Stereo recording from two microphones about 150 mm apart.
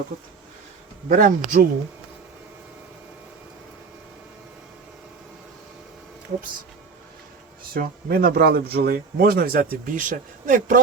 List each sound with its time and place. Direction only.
1.0 s speech: 65° right (ahead or behind)
7.6 s speech: 80° right; by 10.8 s 60° right (ahead or behind)